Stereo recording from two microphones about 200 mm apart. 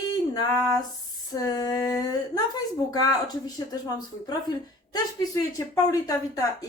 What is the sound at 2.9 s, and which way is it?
A woman's voice, 20° left (ahead or behind).